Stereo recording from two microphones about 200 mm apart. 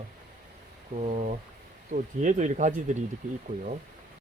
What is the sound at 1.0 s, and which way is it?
Speech, 35° right (ahead or behind).